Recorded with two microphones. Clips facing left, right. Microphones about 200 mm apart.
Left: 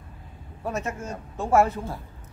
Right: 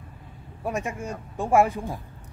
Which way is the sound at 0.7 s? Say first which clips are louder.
Right 1 dB; 15° right (ahead or behind).